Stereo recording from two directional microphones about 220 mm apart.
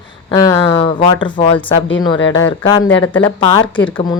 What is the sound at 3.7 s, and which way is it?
Speech, 5° left (ahead or behind).